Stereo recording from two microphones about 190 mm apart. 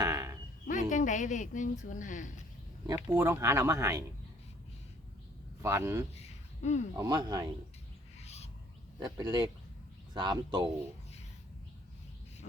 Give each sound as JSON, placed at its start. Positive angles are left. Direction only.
{"t": 0.0, "sound": "a sound", "side_deg": -15}
{"t": 0.7, "sound": "a sound", "side_deg": 40}
{"t": 1.8, "sound": "a woman's voice", "side_deg": 40}
{"t": 2.8, "sound": "speech", "side_deg": -15}
{"t": 5.6, "sound": "speech", "side_deg": -15}
{"t": 6.1, "sound": "a sound", "side_deg": 35}
{"t": 6.9, "sound": "speech", "side_deg": -20}
{"t": 8.2, "sound": "owl", "side_deg": 35}
{"t": 9.0, "sound": "speech", "side_deg": -20}